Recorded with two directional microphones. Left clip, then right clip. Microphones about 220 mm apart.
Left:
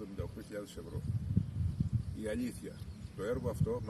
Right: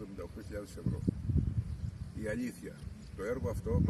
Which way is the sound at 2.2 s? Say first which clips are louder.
Right 1 dB; 10° right (ahead or behind).